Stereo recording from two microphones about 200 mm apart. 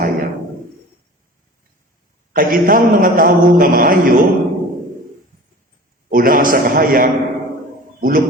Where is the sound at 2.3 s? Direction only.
45° right (ahead or behind).